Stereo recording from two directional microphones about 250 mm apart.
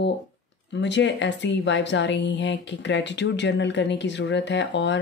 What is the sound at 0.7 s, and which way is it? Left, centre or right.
A woman's voice, left.